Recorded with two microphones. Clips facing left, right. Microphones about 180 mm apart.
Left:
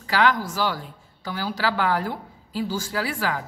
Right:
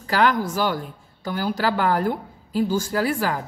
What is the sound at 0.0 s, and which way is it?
A woman's voice, 50° right (ahead or behind).